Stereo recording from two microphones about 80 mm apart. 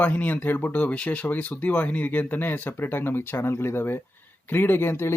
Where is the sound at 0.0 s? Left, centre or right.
Left.